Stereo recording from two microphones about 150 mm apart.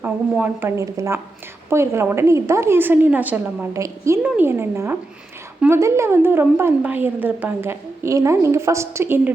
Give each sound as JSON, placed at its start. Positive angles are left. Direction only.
{"t": 0.0, "sound": "a woman's voice", "side_deg": -15}